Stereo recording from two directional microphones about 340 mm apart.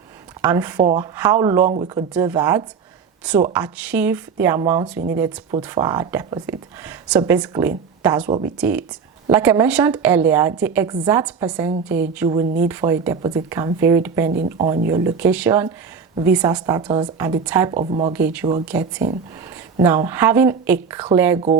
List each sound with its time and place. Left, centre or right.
0.4 s speech: centre
14.3 s speech: centre
17.7 s speech: centre
18.1 s speech: centre